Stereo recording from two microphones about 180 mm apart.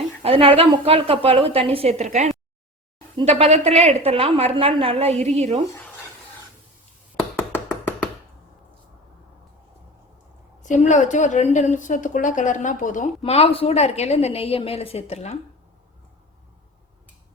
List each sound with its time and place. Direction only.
0.2 s a woman's voice: 30° right (ahead or behind)
10.6 s a woman's voice: 40° left (ahead or behind)